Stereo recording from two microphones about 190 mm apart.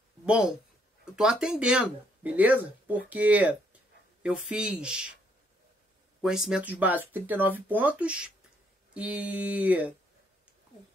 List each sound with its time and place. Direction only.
0.2 s speech: 5° right (ahead or behind)
6.2 s speech: 5° right (ahead or behind)